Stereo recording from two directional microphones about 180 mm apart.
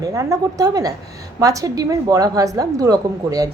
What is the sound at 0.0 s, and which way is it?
A woman's voice, 20° right (ahead or behind).